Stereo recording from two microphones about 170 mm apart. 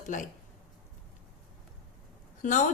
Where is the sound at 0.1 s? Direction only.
50° left (ahead or behind).